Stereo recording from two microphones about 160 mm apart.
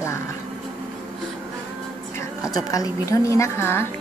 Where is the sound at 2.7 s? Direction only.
20° left (ahead or behind).